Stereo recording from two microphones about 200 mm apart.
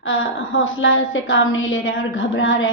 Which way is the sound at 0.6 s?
75° left (ahead or behind).